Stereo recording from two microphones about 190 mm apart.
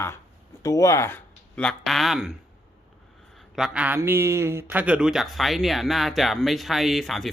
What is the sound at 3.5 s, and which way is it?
A man's voice, 5° right (ahead or behind).